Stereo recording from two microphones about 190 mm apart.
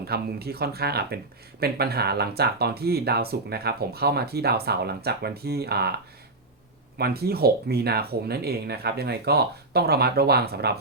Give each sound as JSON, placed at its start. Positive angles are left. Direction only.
{"t": 0.0, "sound": "speech", "side_deg": -55}
{"t": 7.0, "sound": "speech", "side_deg": -55}